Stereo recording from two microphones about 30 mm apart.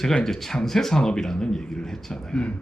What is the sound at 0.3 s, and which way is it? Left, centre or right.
A man's voice, centre.